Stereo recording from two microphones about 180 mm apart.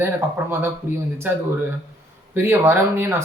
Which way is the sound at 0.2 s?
15° right (ahead or behind).